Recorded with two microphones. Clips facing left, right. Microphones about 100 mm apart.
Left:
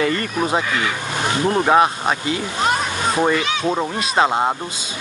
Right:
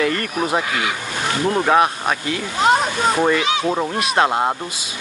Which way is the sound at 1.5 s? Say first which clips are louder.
Left 1 dB; 5° left (ahead or behind).